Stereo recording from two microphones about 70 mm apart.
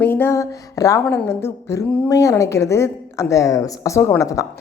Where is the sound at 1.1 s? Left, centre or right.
Left.